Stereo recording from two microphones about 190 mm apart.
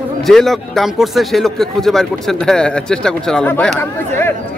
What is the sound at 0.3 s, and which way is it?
Speech, centre (ahead or behind).